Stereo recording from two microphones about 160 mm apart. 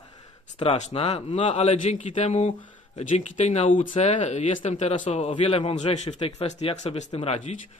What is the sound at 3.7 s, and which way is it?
Speech, 55° left (ahead or behind).